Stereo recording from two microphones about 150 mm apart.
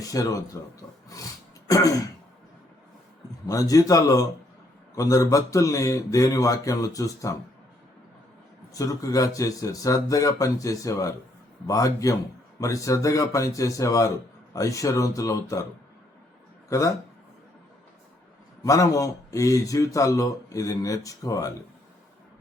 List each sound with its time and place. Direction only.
0.1 s speech: 25° left (ahead or behind)
1.6 s throat clearing: 25° left (ahead or behind)
3.4 s speech: 25° left (ahead or behind)
8.7 s speech: 20° left (ahead or behind)
16.6 s speech: 20° left (ahead or behind)
18.6 s speech: 20° left (ahead or behind)